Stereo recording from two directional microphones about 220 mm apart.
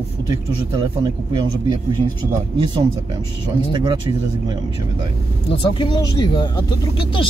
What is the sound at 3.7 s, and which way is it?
Speech, 20° right (ahead or behind).